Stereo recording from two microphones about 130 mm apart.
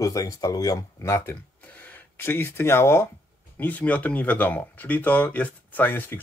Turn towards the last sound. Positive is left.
turn(degrees=15)  # may be behind; listen again after turning